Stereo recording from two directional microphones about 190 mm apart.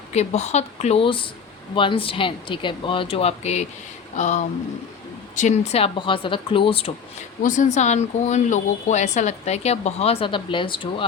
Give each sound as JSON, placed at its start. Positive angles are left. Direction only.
{"t": 0.1, "sound": "speech", "side_deg": 35}